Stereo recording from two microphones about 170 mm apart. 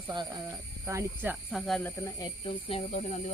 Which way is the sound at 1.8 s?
20° left (ahead or behind).